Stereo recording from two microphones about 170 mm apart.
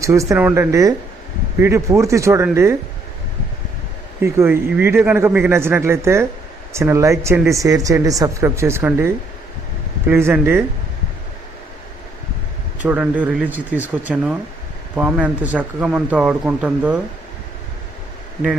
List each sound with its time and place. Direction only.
0.0 s speech: 20° right (ahead or behind)
4.2 s speech: 15° right (ahead or behind)
12.8 s speech: 10° right (ahead or behind)